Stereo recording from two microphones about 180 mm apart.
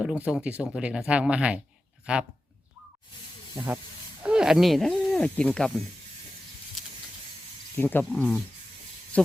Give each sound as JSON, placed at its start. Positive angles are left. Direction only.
{"t": 0.0, "sound": "speech", "side_deg": -5}
{"t": 4.2, "sound": "speech", "side_deg": -5}
{"t": 7.8, "sound": "speech", "side_deg": 10}